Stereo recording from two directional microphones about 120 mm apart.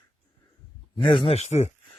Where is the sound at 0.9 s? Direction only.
40° left (ahead or behind).